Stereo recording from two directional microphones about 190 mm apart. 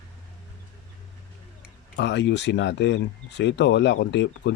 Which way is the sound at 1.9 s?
65° left (ahead or behind).